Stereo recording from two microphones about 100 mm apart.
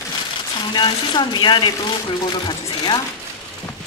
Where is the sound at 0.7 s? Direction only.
50° left (ahead or behind).